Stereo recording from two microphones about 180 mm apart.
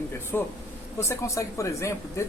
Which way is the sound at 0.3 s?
10° left (ahead or behind).